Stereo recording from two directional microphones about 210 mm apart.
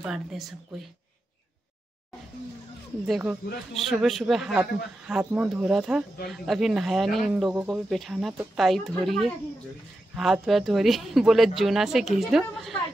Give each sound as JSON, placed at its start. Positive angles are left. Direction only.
{"t": 0.0, "sound": "speech", "side_deg": 0}
{"t": 3.1, "sound": "speech", "side_deg": -5}